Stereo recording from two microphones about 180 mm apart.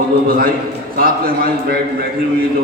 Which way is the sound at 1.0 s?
55° right (ahead or behind).